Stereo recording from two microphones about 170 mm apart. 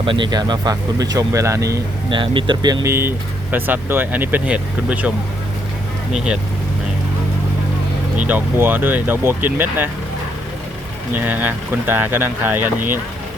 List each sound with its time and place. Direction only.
0.0 s speech: 30° right (ahead or behind); by 6.4 s 5° right (ahead or behind)
8.1 s speech: 10° right (ahead or behind)
11.1 s speech: 10° right (ahead or behind)